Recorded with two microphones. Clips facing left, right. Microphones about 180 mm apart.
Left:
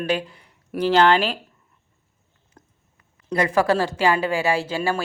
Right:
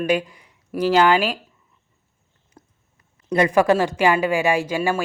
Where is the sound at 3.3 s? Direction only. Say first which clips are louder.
Right 3 dB; 20° right (ahead or behind).